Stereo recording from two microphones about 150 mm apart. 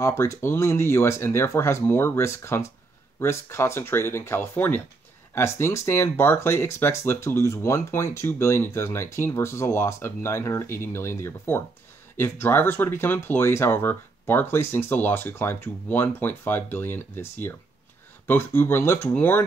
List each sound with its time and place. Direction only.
0.0 s speech: 20° left (ahead or behind)